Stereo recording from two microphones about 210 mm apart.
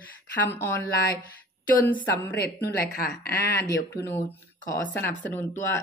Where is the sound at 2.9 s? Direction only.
45° left (ahead or behind).